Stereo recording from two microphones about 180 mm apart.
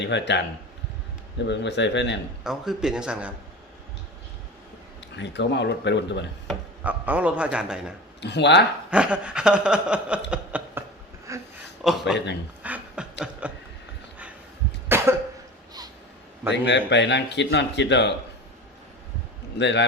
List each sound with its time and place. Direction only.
0.0 s speech: 75° left (ahead or behind)
1.5 s speech: 75° left (ahead or behind)
2.4 s a man's voice: centre (ahead or behind)
5.1 s speech: 75° left (ahead or behind)
6.8 s a man's voice: 10° right (ahead or behind)
8.2 s speech: 70° left (ahead or behind)
8.9 s a sound: 5° right (ahead or behind)
11.8 s a man's voice: centre (ahead or behind)
12.6 s beatboxing: 5° right (ahead or behind)
14.8 s cough: 15° right (ahead or behind)
16.5 s speech: 75° left (ahead or behind)
19.5 s speech: 75° left (ahead or behind)